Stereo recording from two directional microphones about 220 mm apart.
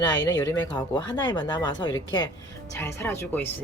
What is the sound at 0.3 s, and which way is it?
Speech, 10° left (ahead or behind).